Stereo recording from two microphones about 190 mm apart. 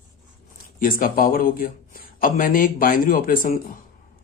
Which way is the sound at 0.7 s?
45° left (ahead or behind).